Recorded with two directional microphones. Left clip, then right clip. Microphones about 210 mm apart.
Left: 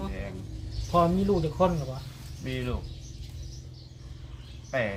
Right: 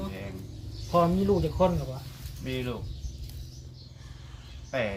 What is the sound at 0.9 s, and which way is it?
Speech, 10° right (ahead or behind).